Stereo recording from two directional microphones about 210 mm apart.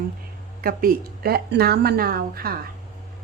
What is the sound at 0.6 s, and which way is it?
A woman's voice, 45° right (ahead or behind).